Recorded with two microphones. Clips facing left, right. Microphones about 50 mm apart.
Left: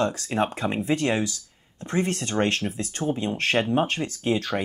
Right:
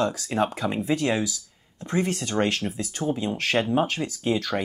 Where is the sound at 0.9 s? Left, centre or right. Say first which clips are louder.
Even; centre.